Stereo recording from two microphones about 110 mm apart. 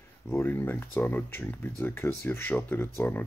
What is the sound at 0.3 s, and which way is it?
Speech, 20° left (ahead or behind).